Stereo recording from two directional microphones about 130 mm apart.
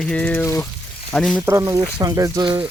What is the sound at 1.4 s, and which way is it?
Speech, 20° right (ahead or behind).